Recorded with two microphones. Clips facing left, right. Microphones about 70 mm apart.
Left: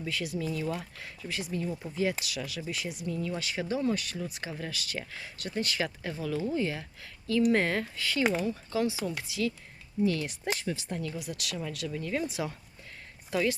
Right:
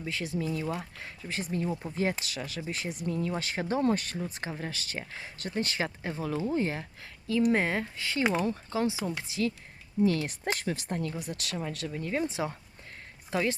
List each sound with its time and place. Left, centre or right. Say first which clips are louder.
0.0 s speech: even; right
8.3 s speech: right 1 dB; right
8.7 s speech: left 2 dB; right